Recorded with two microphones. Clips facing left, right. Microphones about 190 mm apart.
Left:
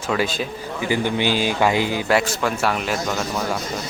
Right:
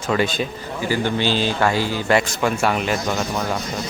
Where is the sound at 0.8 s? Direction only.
15° left (ahead or behind).